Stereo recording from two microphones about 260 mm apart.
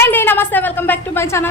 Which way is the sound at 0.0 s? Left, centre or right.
Centre.